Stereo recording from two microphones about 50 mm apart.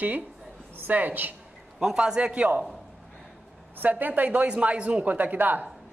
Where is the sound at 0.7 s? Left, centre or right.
Right.